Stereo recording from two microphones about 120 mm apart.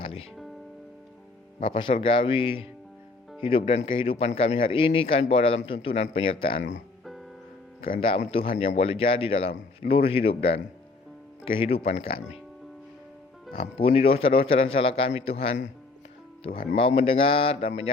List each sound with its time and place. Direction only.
0.0 s music: 50° left (ahead or behind)
1.6 s a man's voice: 45° left (ahead or behind)
7.0 s music: centre (ahead or behind)
7.8 s a man's voice: 55° left (ahead or behind)
13.6 s a man's voice: 50° left (ahead or behind)